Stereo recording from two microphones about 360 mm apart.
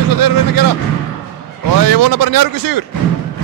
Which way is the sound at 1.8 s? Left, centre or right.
Right.